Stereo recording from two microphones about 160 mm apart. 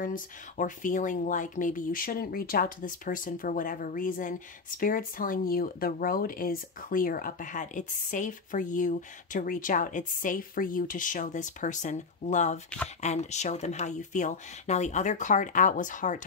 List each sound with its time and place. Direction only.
0.0 s speech: 55° left (ahead or behind)